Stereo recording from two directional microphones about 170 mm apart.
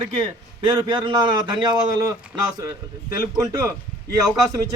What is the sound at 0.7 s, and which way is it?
A man's voice, 25° right (ahead or behind).